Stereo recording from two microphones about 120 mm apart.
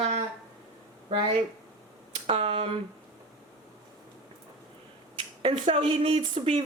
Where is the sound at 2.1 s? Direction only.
55° right (ahead or behind).